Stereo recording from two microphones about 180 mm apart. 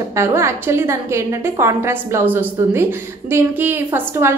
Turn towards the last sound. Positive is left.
turn(degrees=-15)  # may be behind; listen again after turning